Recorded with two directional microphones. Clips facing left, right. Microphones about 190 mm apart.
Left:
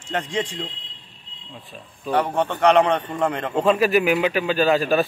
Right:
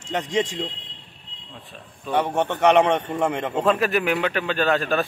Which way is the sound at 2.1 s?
20° right (ahead or behind).